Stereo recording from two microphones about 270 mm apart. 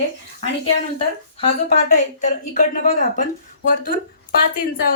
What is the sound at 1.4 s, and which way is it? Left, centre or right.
A woman's voice, left.